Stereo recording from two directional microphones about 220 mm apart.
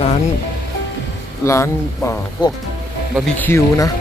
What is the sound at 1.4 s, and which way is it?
Speech, 15° left (ahead or behind).